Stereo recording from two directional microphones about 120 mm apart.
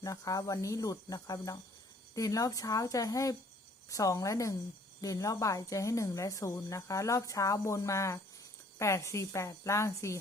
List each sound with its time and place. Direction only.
0.0 s speech: 30° left (ahead or behind)